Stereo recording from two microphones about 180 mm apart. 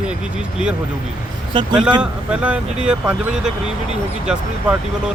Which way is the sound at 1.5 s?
25° right (ahead or behind).